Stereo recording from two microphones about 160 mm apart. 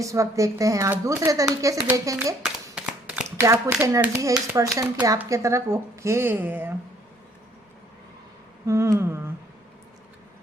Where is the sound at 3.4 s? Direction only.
20° right (ahead or behind).